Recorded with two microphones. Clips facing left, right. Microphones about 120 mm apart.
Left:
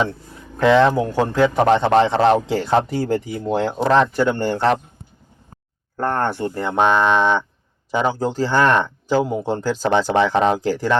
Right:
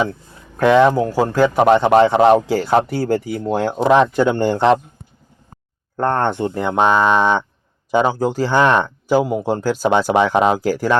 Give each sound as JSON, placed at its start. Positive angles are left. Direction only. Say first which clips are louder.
{"t": 0.7, "sound": "speech", "louder": "right 2 dB", "side_deg": -10}
{"t": 2.5, "sound": "speech", "louder": "right 2 dB", "side_deg": -5}
{"t": 3.8, "sound": "speech", "louder": "right 3 dB", "side_deg": -15}
{"t": 6.0, "sound": "speech", "louder": "right 3 dB", "side_deg": -20}